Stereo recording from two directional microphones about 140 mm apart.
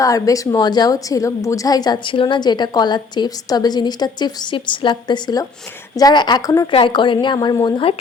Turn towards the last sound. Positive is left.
turn(degrees=40)  # may be behind; listen again after turning